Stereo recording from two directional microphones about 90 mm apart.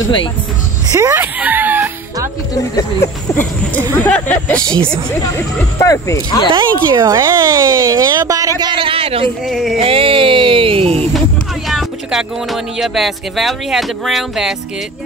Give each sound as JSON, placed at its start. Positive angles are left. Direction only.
{"t": 1.1, "sound": "a sound", "side_deg": -20}
{"t": 2.5, "sound": "speech", "side_deg": 40}
{"t": 3.9, "sound": "speech", "side_deg": 15}
{"t": 5.8, "sound": "speech", "side_deg": 35}
{"t": 6.5, "sound": "speech", "side_deg": -60}
{"t": 7.2, "sound": "speech", "side_deg": -35}
{"t": 8.7, "sound": "a sound", "side_deg": -85}
{"t": 9.5, "sound": "music", "side_deg": 0}
{"t": 9.8, "sound": "music", "side_deg": -90}
{"t": 11.1, "sound": "speech", "side_deg": 0}